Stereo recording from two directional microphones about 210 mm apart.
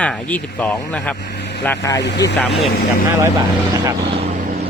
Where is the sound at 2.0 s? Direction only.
55° left (ahead or behind).